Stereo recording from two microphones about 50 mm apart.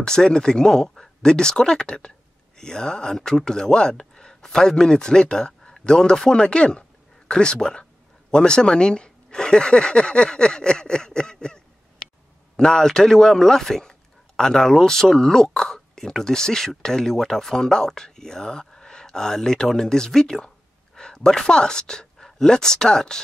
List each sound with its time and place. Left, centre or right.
0.0 s a man's voice: centre